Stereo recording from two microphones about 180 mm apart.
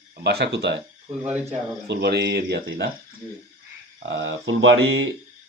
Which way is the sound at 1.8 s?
65° right (ahead or behind).